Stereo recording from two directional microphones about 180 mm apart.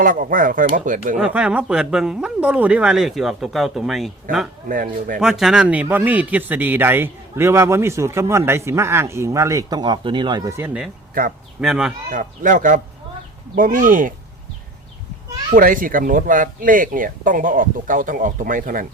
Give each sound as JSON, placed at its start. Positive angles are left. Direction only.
{"t": 0.0, "sound": "speech", "side_deg": -50}
{"t": 1.1, "sound": "speech", "side_deg": -5}
{"t": 4.7, "sound": "speech", "side_deg": -50}
{"t": 5.2, "sound": "a man's voice", "side_deg": 0}
{"t": 11.1, "sound": "speech", "side_deg": -50}
{"t": 11.6, "sound": "speech", "side_deg": 0}
{"t": 12.1, "sound": "speech", "side_deg": -50}
{"t": 15.5, "sound": "speech", "side_deg": -50}